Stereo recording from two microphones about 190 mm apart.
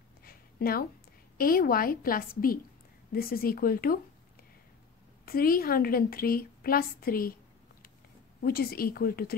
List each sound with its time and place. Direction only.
0.2 s a sound: 50° left (ahead or behind)
1.4 s a woman's voice: 50° left (ahead or behind)
5.2 s a woman's voice: 50° left (ahead or behind)
8.4 s a woman's voice: 50° left (ahead or behind)